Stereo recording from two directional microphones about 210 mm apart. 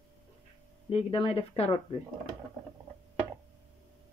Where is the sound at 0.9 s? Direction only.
25° left (ahead or behind).